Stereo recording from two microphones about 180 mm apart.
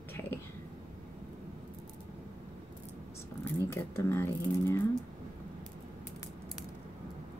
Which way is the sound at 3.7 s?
15° left (ahead or behind).